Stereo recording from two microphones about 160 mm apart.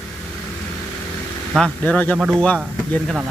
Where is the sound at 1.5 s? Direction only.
5° left (ahead or behind).